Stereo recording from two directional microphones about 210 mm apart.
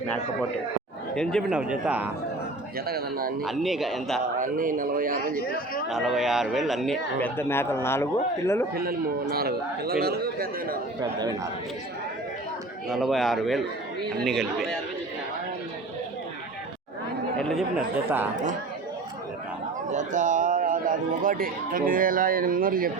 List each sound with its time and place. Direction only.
1.1 s speech: 5° left (ahead or behind)
2.8 s a man's voice: 45° right (ahead or behind)
3.4 s speech: centre (ahead or behind)
4.4 s speech: 40° right (ahead or behind)
5.4 s speech: 45° left (ahead or behind)
5.9 s speech: centre (ahead or behind)
8.7 s a man's voice: 45° right (ahead or behind)
12.9 s speech: centre (ahead or behind)
17.3 s speech: centre (ahead or behind)
19.9 s speech: 35° right (ahead or behind)